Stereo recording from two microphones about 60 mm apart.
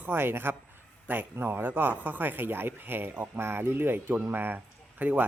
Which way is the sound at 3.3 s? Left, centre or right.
Right.